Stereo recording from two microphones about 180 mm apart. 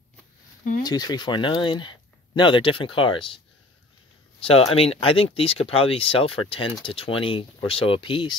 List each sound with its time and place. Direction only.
0.8 s speech: 20° left (ahead or behind)
4.4 s speech: 30° left (ahead or behind)